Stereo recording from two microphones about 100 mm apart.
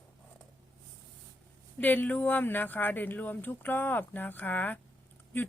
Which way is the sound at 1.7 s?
20° left (ahead or behind).